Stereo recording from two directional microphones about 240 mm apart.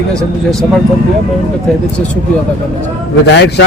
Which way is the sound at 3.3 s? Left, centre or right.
Left.